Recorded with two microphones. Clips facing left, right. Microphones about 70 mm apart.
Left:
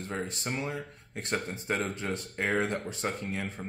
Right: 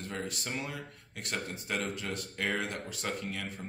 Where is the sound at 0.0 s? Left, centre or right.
Left.